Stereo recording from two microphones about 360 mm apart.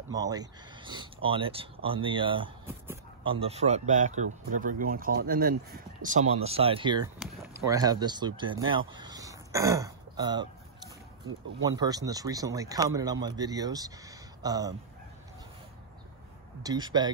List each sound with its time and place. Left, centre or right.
0.1 s speech: centre
11.6 s speech: centre
16.6 s speech: centre